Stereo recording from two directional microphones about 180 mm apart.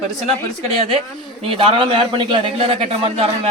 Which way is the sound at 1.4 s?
30° right (ahead or behind).